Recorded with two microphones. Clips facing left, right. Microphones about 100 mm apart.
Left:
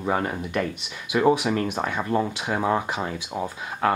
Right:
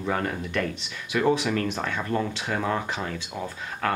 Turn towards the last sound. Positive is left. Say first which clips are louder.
# left 4 dB
turn(degrees=15)  # may be behind; listen again after turning